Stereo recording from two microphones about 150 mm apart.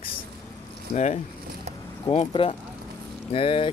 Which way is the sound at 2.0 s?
40° left (ahead or behind).